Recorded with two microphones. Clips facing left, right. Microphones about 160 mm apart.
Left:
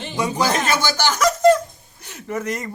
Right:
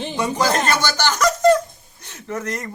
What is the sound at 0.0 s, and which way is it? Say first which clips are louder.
Speech: right 1 dB; 5° left (ahead or behind).